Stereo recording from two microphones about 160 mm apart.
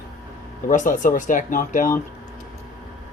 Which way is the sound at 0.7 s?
55° left (ahead or behind).